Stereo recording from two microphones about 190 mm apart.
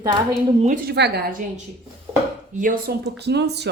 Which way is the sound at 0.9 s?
60° right (ahead or behind).